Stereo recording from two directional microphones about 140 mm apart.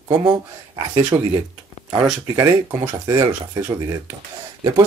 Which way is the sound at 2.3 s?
25° right (ahead or behind).